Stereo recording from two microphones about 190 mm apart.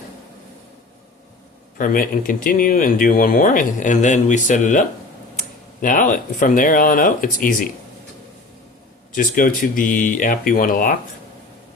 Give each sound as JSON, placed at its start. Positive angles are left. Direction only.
{"t": 1.8, "sound": "speech", "side_deg": 45}
{"t": 9.1, "sound": "speech", "side_deg": 45}